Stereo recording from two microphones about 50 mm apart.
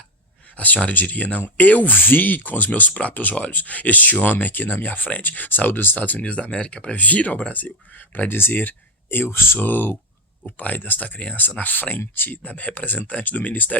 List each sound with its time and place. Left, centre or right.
0.5 s speech: left
6.9 s speech: left
8.3 s speech: left
9.6 s speech: left
12.4 s speech: left